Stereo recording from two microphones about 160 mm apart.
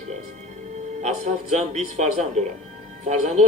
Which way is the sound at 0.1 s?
45° right (ahead or behind).